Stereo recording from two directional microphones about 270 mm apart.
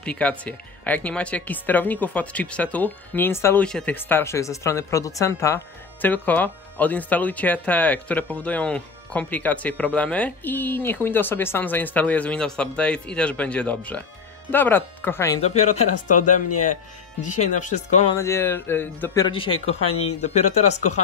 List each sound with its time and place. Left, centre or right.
0.0 s speech: centre
15.4 s speech: left
17.4 s speech: left
18.1 s speech: centre